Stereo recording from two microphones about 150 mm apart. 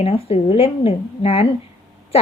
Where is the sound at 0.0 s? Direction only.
40° left (ahead or behind).